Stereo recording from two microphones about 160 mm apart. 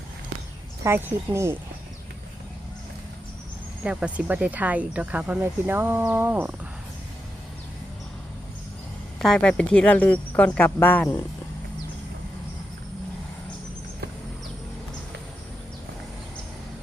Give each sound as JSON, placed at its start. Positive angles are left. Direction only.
{"t": 0.9, "sound": "speech", "side_deg": -15}
{"t": 3.8, "sound": "speech", "side_deg": -5}
{"t": 9.1, "sound": "speech", "side_deg": 5}